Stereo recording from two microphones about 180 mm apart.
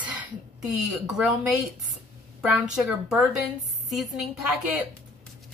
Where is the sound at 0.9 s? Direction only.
5° right (ahead or behind).